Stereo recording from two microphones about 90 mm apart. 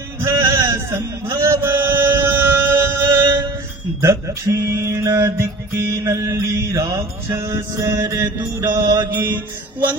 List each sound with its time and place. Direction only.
0.2 s a sound: 25° right (ahead or behind)
4.0 s music: 30° right (ahead or behind)
8.7 s music: 40° right (ahead or behind)
9.0 s mantra: 20° right (ahead or behind)